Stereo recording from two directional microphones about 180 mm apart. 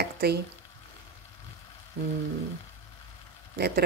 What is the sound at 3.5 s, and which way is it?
Speech, 65° right (ahead or behind).